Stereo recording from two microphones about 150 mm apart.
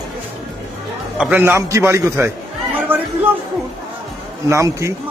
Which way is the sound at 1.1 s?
10° right (ahead or behind).